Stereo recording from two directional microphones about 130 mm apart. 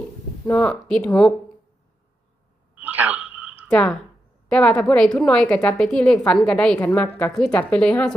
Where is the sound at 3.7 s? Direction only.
5° left (ahead or behind).